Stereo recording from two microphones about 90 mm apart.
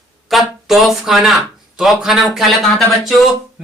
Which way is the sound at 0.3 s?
Centre (ahead or behind).